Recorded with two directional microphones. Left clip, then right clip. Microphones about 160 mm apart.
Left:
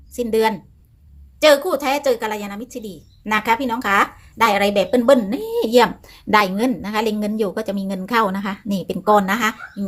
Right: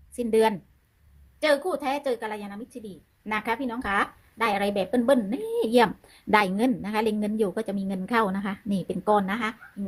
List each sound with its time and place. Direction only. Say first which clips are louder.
0.2 s a woman's voice: left 4 dB; 20° right (ahead or behind)
1.4 s a woman's voice: left 10 dB; 5° right (ahead or behind)